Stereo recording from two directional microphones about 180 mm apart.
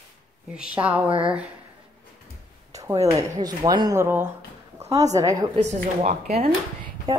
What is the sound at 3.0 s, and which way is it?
Speech, 20° right (ahead or behind).